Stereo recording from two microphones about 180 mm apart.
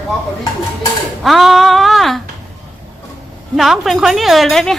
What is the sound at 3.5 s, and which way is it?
A woman's voice, centre (ahead or behind).